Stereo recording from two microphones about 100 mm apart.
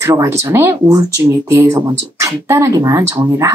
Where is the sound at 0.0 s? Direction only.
30° right (ahead or behind).